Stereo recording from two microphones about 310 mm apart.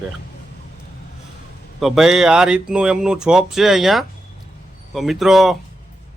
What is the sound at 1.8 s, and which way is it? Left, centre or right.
Speech, centre.